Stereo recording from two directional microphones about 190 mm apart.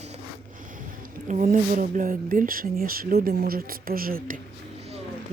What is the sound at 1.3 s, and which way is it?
Speech, 40° right (ahead or behind).